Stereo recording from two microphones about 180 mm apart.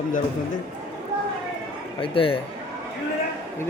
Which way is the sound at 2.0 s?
30° left (ahead or behind).